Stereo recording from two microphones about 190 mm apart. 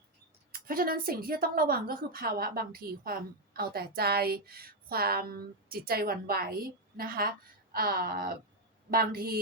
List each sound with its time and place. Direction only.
0.5 s a woman's voice: 50° right (ahead or behind)